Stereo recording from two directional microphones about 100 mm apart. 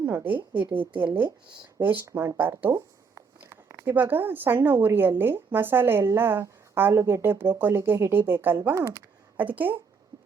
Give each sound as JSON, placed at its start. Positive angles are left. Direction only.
{"t": 0.0, "sound": "speech", "side_deg": -20}
{"t": 8.8, "sound": "speech", "side_deg": -40}
{"t": 9.4, "sound": "speech", "side_deg": -15}
{"t": 10.1, "sound": "heart sounds", "side_deg": -45}